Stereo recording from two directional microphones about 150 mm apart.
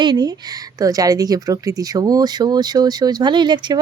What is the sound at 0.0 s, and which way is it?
A woman's voice, 30° right (ahead or behind).